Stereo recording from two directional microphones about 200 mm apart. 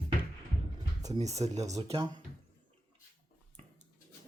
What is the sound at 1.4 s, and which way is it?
Speech, 35° right (ahead or behind).